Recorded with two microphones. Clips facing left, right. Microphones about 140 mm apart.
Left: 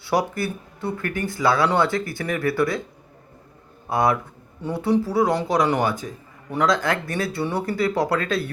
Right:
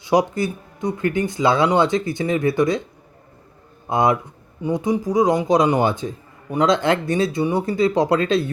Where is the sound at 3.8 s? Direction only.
20° right (ahead or behind).